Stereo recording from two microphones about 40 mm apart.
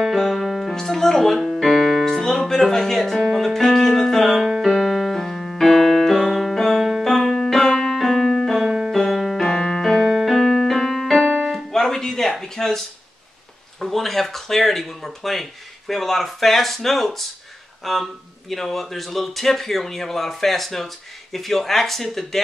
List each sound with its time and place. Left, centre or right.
0.0 s music: centre
0.7 s music: centre
4.6 s keyboard: centre
6.2 s music: centre
7.1 s music: centre
8.6 s keyboard: centre
8.9 s keyboard: centre
9.4 s keyboard: centre
10.1 s music: centre
11.7 s a sound: centre
13.7 s speech: centre